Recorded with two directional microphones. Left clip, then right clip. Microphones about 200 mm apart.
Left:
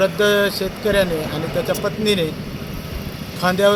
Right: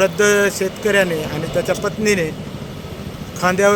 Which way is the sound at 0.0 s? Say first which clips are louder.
Right 2 dB; 20° right (ahead or behind).